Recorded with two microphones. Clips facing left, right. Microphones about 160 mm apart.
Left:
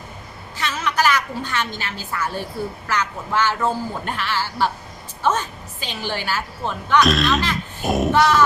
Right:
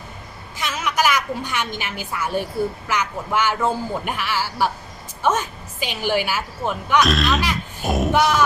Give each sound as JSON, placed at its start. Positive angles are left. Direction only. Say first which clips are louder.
{"t": 0.5, "sound": "a woman's voice", "louder": "even", "side_deg": -15}
{"t": 7.0, "sound": "speech", "louder": "left 2 dB", "side_deg": 0}
{"t": 7.8, "sound": "a sound", "louder": "left 2 dB", "side_deg": 0}
{"t": 8.1, "sound": "music", "louder": "left 1 dB", "side_deg": -15}